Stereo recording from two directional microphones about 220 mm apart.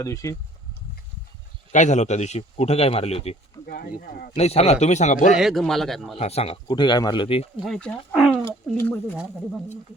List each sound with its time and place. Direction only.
0.0 s speech: 15° left (ahead or behind)
1.7 s a man's voice: 30° left (ahead or behind)
3.7 s speech: 40° left (ahead or behind)
4.4 s a man's voice: 30° left (ahead or behind)
5.3 s a man's voice: centre (ahead or behind)
6.1 s a man's voice: 30° left (ahead or behind)
7.6 s a man's voice: 5° left (ahead or behind)
8.4 s speech: 10° left (ahead or behind)